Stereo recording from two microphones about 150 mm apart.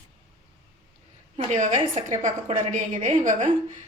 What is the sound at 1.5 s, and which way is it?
A woman's voice, 55° right (ahead or behind).